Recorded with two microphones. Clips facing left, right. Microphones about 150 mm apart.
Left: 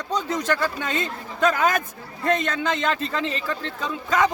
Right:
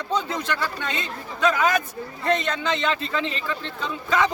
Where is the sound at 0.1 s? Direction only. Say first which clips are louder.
Left 2 dB; 40° left (ahead or behind).